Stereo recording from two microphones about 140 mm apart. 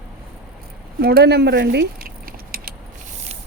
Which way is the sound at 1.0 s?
90° right.